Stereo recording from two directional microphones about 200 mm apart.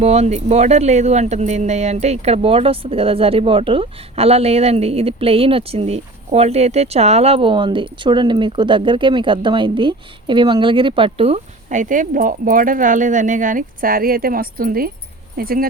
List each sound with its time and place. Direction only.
0.0 s speech: 35° right (ahead or behind)